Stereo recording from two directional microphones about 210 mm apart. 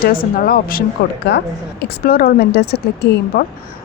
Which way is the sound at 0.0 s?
45° left (ahead or behind).